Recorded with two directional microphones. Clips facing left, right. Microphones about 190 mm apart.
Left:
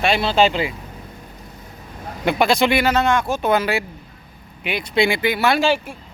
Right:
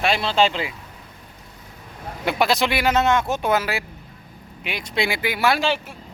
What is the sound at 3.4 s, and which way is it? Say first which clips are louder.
Speech: left 3 dB; 5° right (ahead or behind).